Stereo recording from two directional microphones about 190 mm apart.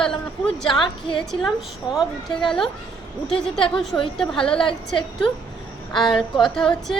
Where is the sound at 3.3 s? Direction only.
25° left (ahead or behind).